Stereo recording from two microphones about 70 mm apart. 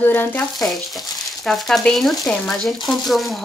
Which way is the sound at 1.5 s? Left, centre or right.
Centre.